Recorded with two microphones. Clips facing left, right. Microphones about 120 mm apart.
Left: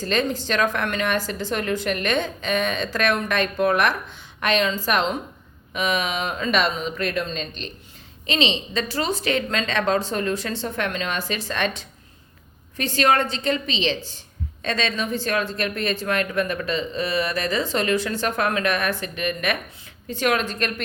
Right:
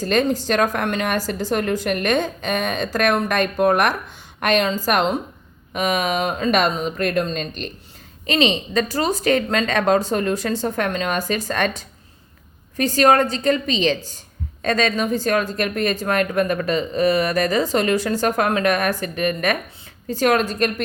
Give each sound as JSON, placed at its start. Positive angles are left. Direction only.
{"t": 0.0, "sound": "a woman's voice", "side_deg": -45}